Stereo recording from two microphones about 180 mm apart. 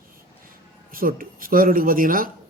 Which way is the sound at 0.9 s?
55° right (ahead or behind).